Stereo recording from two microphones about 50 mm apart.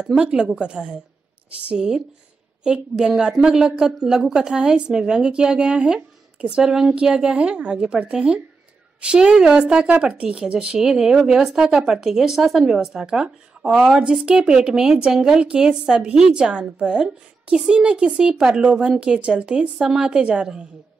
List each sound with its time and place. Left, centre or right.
0.1 s a woman's voice: centre
10.8 s a woman's voice: centre
14.2 s a woman's voice: centre
19.8 s a woman's voice: centre
20.1 s speech: right